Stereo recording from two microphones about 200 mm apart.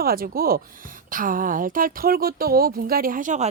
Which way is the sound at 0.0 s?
50° right (ahead or behind).